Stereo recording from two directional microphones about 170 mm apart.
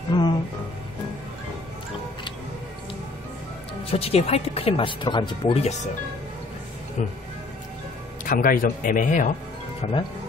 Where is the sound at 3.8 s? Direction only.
35° left (ahead or behind).